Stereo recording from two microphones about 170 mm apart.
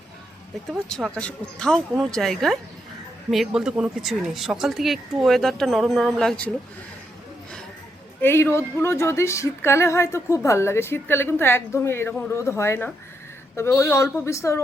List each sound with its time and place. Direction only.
0.7 s speech: centre (ahead or behind)
8.2 s speech: 15° left (ahead or behind)